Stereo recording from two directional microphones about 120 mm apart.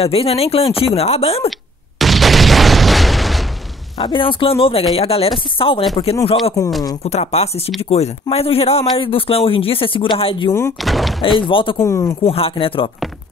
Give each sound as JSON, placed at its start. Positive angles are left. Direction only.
{"t": 0.0, "sound": "speech", "side_deg": 55}
{"t": 2.0, "sound": "boom", "side_deg": 0}
{"t": 4.0, "sound": "a man's voice", "side_deg": 45}
{"t": 6.6, "sound": "speech", "side_deg": 25}
{"t": 7.1, "sound": "a man's voice", "side_deg": 65}
{"t": 10.8, "sound": "speech", "side_deg": 0}
{"t": 11.2, "sound": "a man's voice", "side_deg": 45}
{"t": 11.8, "sound": "speech", "side_deg": 25}
{"t": 12.3, "sound": "a man's voice", "side_deg": 50}